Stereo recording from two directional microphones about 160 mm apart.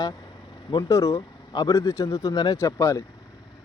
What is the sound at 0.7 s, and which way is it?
Speech, 25° left (ahead or behind).